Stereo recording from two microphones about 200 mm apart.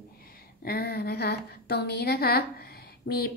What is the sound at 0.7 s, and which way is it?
A woman's voice, 50° left (ahead or behind).